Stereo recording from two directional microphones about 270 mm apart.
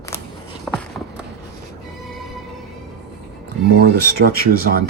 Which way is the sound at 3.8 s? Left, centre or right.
Right.